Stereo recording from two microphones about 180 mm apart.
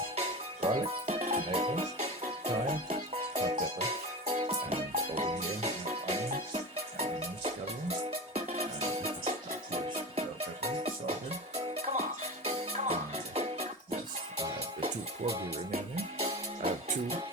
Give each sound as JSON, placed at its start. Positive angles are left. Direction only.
{"t": 0.2, "sound": "music", "side_deg": -35}
{"t": 15.5, "sound": "music", "side_deg": -35}